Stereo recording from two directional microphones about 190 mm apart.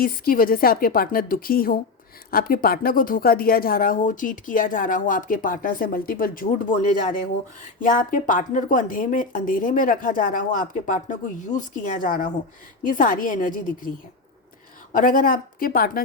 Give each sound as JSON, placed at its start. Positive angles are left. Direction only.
{"t": 0.0, "sound": "speech", "side_deg": 50}
{"t": 14.9, "sound": "speech", "side_deg": 45}